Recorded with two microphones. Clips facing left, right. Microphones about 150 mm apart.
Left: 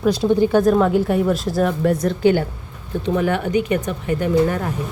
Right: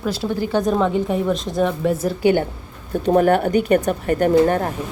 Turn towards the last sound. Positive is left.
turn(degrees=-45)  # may be behind; listen again after turning